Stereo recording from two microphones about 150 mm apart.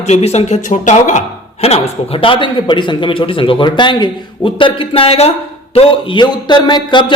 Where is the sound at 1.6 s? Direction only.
40° left (ahead or behind).